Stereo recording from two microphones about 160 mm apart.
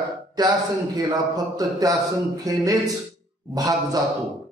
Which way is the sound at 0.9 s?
25° right (ahead or behind).